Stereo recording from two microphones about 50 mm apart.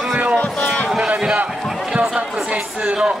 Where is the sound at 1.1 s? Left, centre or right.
Centre.